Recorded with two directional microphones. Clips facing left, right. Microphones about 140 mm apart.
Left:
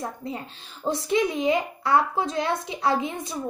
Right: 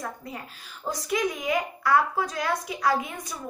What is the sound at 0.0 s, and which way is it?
A child's voice, 25° left (ahead or behind).